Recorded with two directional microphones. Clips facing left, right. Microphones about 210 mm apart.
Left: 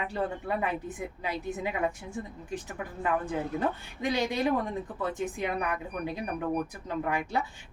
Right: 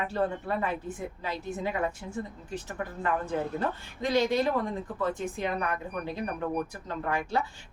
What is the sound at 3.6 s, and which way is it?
A woman's voice, 15° left (ahead or behind).